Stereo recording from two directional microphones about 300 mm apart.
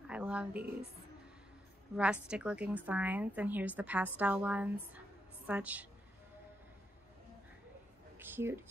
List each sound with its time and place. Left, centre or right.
0.0 s a woman's voice: centre
2.2 s speech: centre
8.2 s speech: centre